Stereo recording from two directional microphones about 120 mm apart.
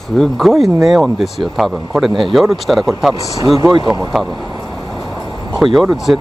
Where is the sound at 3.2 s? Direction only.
30° left (ahead or behind).